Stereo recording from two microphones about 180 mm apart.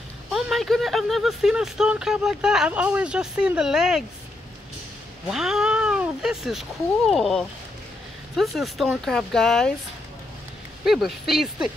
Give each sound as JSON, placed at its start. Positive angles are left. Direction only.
{"t": 0.3, "sound": "speech", "side_deg": 0}
{"t": 5.3, "sound": "speech", "side_deg": -5}
{"t": 10.9, "sound": "speech", "side_deg": 0}